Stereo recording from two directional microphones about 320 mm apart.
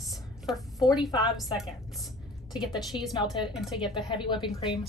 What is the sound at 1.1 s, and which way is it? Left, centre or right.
Speech, centre.